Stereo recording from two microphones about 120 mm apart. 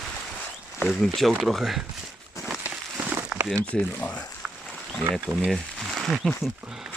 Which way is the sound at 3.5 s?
10° left (ahead or behind).